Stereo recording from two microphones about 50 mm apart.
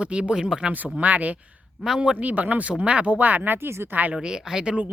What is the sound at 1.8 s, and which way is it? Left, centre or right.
Speech, centre.